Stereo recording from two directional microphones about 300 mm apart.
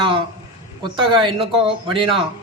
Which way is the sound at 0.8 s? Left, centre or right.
Centre.